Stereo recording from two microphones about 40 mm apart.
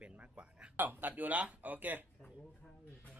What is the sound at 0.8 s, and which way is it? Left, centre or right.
Speech, right.